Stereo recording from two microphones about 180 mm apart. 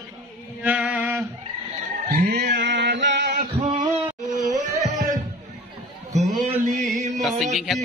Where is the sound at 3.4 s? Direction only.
35° right (ahead or behind).